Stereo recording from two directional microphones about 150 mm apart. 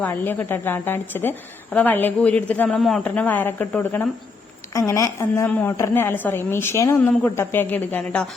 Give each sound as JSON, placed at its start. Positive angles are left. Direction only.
{"t": 0.0, "sound": "a woman's voice", "side_deg": 15}